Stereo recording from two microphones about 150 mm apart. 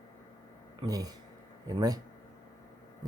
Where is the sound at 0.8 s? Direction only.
25° right (ahead or behind).